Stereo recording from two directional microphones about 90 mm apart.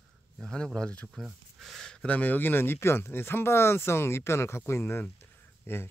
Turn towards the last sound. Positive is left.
turn(degrees=25)  # may be behind; listen again after turning